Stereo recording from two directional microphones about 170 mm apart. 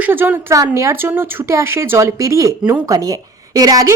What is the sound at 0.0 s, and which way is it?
Speech, 10° right (ahead or behind).